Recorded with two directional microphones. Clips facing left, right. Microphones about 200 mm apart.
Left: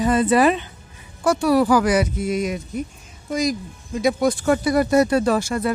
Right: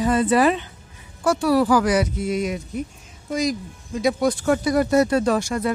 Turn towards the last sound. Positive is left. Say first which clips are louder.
# left 1 dB
turn(degrees=5)  # may be behind; listen again after turning